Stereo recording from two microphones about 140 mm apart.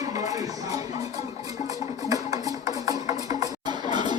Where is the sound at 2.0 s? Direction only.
25° right (ahead or behind).